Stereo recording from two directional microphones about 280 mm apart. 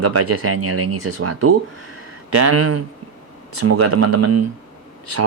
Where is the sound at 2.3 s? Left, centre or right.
Right.